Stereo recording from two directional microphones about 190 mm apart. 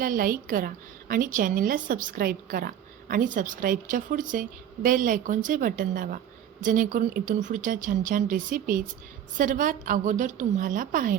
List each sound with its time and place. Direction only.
0.0 s a woman's voice: 50° right (ahead or behind)